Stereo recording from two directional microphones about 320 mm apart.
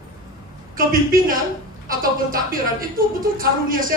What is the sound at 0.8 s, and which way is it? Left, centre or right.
A woman's voice, right.